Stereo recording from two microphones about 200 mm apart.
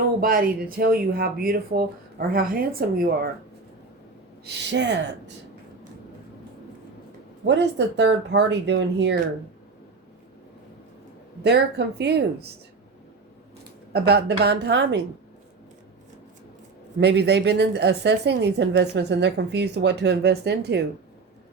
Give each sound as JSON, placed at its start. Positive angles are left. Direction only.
{"t": 0.2, "sound": "speech", "side_deg": -45}
{"t": 4.4, "sound": "a woman's voice", "side_deg": -60}
{"t": 7.4, "sound": "a woman's voice", "side_deg": -60}
{"t": 11.4, "sound": "a woman's voice", "side_deg": -60}
{"t": 13.9, "sound": "a woman's voice", "side_deg": -55}
{"t": 17.0, "sound": "a woman's voice", "side_deg": -55}